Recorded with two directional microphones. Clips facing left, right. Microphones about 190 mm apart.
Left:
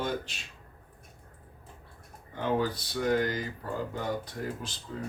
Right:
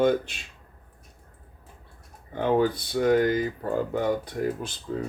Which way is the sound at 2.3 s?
55° right (ahead or behind).